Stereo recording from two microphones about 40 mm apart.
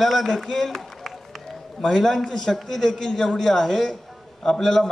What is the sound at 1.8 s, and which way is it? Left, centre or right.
A man's voice, centre.